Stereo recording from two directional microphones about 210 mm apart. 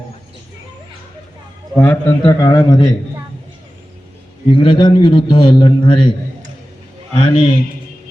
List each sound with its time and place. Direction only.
1.7 s a man's voice: 10° left (ahead or behind)
4.5 s a man's voice: 25° left (ahead or behind)
7.2 s a man's voice: 25° left (ahead or behind)